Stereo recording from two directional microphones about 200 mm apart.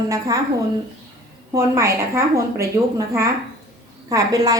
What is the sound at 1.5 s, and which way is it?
A woman's voice, 15° right (ahead or behind).